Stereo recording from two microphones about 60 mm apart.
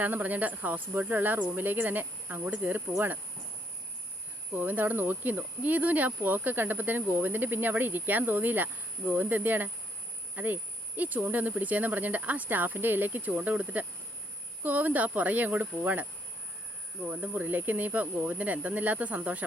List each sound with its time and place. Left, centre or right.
0.0 s speech: right
4.5 s cricket: right
10.3 s speech: right
17.1 s speech: right